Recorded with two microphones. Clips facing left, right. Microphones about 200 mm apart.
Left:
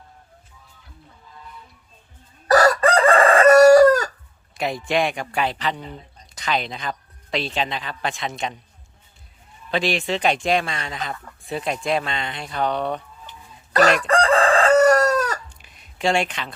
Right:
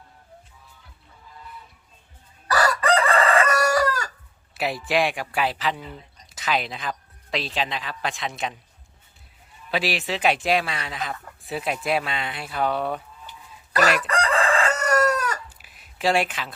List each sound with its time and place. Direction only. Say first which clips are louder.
2.5 s chicken: left 5 dB; 45° left (ahead or behind)
4.5 s speech: left 1 dB; 5° right (ahead or behind)
9.7 s speech: left 3 dB; 5° right (ahead or behind)
13.7 s chicken: left 5 dB; 35° left (ahead or behind)
15.5 s a sound: left 2 dB; 5° right (ahead or behind)